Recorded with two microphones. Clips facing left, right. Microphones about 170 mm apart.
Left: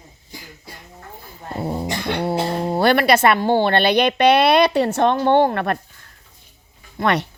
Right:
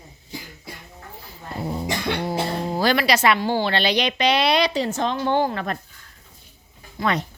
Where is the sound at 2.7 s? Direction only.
60° left (ahead or behind).